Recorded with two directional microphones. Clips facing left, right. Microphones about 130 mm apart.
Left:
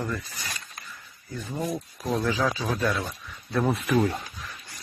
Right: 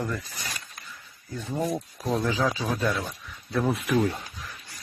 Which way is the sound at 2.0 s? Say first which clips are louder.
Even; 25° right (ahead or behind).